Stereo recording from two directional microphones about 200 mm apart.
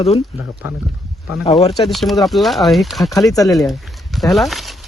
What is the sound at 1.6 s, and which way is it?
Speech, 30° left (ahead or behind).